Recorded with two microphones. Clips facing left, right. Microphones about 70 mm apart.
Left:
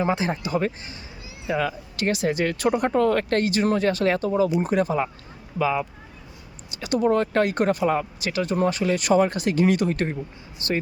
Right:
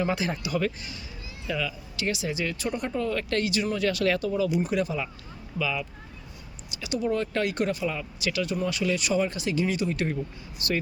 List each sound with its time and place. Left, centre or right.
0.0 s speech: left
1.5 s speech: left
10.6 s speech: left